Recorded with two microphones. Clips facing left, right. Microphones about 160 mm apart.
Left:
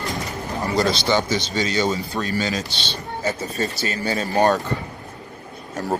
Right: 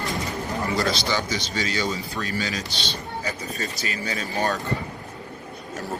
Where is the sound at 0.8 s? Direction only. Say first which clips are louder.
Left 8 dB; 25° left (ahead or behind).